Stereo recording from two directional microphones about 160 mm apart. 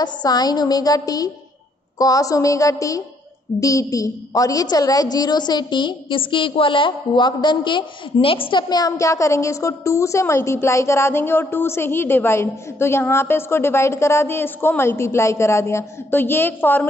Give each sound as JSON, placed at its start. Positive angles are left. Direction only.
{"t": 0.0, "sound": "a woman's voice", "side_deg": 25}